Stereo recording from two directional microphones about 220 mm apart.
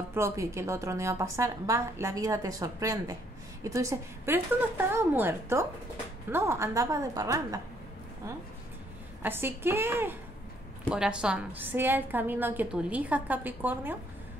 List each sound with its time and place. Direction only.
0.1 s a woman's voice: 10° right (ahead or behind)
9.2 s a woman's voice: 10° right (ahead or behind)